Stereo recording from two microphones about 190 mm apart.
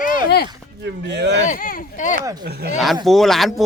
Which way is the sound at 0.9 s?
65° right (ahead or behind).